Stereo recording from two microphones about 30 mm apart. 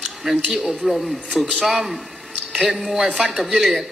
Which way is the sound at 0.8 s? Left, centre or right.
Centre.